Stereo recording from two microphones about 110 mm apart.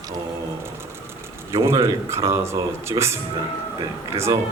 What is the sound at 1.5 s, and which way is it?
Speech, 25° right (ahead or behind).